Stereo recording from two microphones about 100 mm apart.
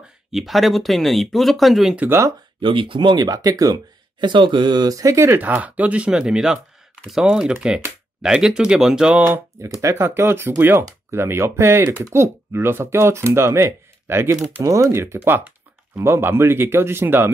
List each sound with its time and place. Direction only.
0.3 s speech: centre (ahead or behind)
2.0 s speech: 20° right (ahead or behind)
2.6 s speech: 60° right (ahead or behind); by 9.2 s 5° right (ahead or behind)
9.6 s speech: 30° right (ahead or behind)
15.1 s speech: 15° right (ahead or behind)